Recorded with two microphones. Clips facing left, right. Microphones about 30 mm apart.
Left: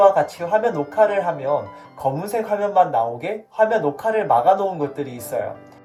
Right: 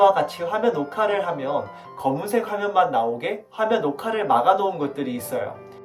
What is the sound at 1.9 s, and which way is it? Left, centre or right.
Speech, right.